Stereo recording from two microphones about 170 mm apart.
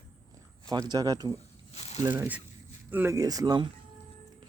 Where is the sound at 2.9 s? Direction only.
15° right (ahead or behind).